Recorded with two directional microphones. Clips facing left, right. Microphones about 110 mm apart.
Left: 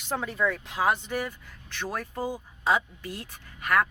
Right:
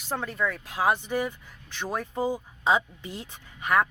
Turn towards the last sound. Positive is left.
turn(degrees=-20)  # may be behind; listen again after turning